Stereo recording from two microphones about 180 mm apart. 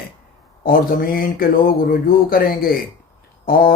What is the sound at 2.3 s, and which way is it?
Speech, 55° left (ahead or behind).